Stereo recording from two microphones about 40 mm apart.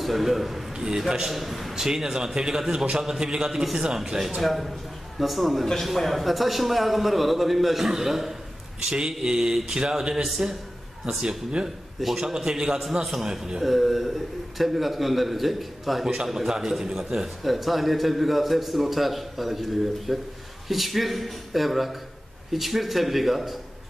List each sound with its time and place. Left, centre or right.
0.0 s a man's voice: centre
0.7 s a man's voice: centre
1.2 s a man's voice: centre
1.9 s mantra: centre
4.4 s a man's voice: centre
9.2 s mantra: centre
10.2 s a man's voice: centre
11.1 s mantra: centre
13.7 s a man's voice: centre